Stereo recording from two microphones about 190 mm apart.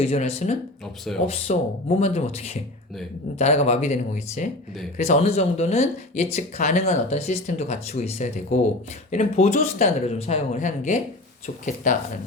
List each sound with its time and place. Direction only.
0.0 s speech: 30° left (ahead or behind)